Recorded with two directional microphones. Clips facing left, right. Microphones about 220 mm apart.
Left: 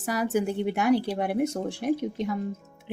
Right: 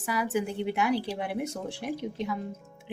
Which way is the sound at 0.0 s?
40° left (ahead or behind).